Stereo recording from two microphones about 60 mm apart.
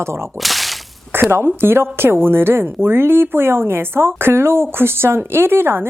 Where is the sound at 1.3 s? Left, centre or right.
Right.